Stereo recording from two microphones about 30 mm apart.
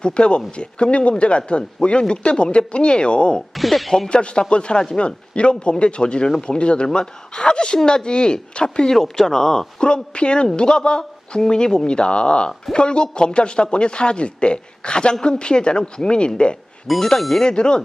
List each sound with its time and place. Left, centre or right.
0.0 s speech: left
3.5 s speech: centre
4.1 s speech: left
8.9 s speech: centre
9.8 s speech: left
17.2 s speech: centre
17.4 s speech: left